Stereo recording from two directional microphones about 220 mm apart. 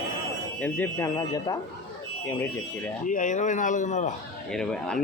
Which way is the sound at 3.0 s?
35° left (ahead or behind).